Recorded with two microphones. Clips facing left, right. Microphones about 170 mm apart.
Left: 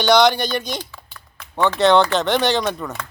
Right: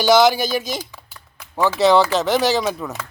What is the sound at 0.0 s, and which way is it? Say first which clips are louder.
Speech: right 1 dB; 5° right (ahead or behind).